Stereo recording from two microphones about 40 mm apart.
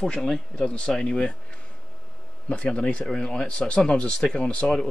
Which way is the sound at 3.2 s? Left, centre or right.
Left.